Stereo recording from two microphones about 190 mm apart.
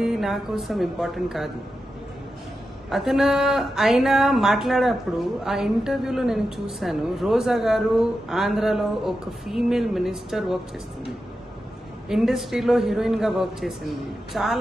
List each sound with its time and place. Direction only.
0.0 s speech: centre (ahead or behind)
2.9 s speech: centre (ahead or behind)
12.1 s speech: centre (ahead or behind)